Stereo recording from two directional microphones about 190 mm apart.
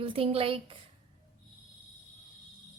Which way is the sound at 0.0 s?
30° right (ahead or behind).